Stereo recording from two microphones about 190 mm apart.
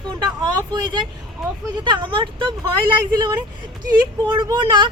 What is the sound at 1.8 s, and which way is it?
Speech, 25° right (ahead or behind).